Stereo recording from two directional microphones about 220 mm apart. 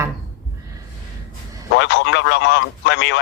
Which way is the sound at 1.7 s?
50° left (ahead or behind).